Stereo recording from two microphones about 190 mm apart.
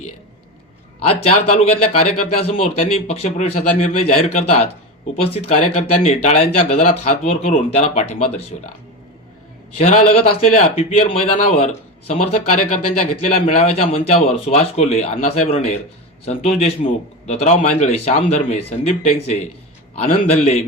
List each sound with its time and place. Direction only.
1.5 s speech: 35° left (ahead or behind)
9.7 s speech: 30° left (ahead or behind)